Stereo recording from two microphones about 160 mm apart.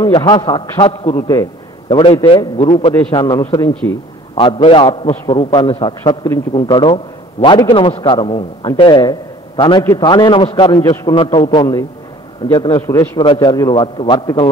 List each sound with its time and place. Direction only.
0.0 s a man's voice: 25° left (ahead or behind)
1.1 s a man's voice: 20° left (ahead or behind)
4.4 s a man's voice: 35° left (ahead or behind)
5.0 s a man's voice: 20° left (ahead or behind)
5.3 s a man's voice: 30° left (ahead or behind)
12.8 s a man's voice: 15° left (ahead or behind)